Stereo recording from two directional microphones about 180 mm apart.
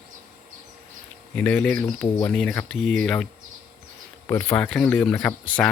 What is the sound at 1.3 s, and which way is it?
Speech, 5° left (ahead or behind).